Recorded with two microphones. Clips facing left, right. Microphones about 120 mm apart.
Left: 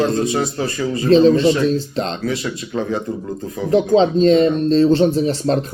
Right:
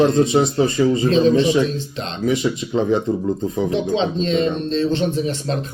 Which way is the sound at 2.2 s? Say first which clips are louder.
Right 3 dB; 15° right (ahead or behind).